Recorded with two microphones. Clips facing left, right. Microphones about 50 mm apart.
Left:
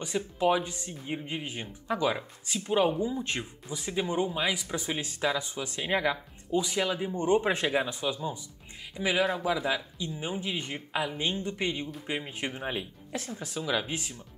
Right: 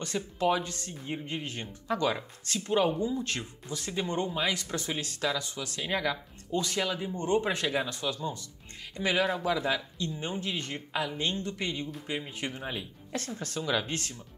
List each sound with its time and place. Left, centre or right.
0.0 s speech: centre
13.1 s speech: centre